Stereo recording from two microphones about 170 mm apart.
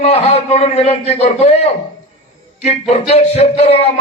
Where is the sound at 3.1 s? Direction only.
40° left (ahead or behind).